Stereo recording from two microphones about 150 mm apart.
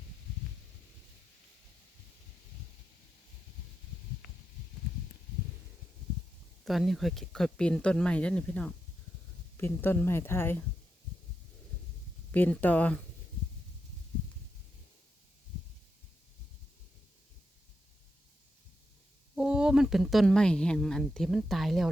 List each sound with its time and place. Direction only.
6.7 s speech: centre (ahead or behind)
12.3 s speech: 10° left (ahead or behind)
19.4 s speech: 5° right (ahead or behind)